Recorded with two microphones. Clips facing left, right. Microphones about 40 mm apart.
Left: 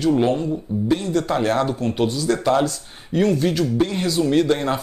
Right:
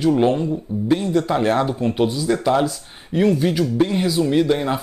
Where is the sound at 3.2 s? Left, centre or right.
Centre.